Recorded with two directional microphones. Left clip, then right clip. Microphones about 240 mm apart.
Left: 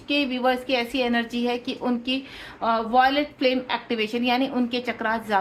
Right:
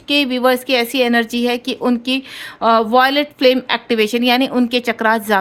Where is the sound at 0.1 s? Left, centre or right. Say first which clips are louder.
Right 8 dB; right.